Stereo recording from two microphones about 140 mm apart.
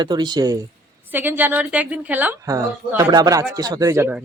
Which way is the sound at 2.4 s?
25° right (ahead or behind).